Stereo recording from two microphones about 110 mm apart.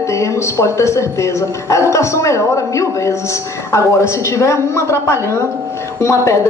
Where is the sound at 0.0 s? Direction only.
25° left (ahead or behind).